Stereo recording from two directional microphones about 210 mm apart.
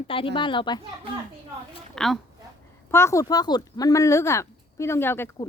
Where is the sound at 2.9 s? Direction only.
10° left (ahead or behind).